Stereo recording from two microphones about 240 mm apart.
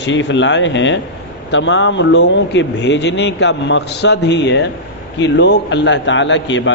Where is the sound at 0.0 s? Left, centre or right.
Left.